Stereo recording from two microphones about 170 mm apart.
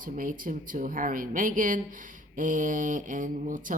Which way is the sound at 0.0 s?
55° right (ahead or behind).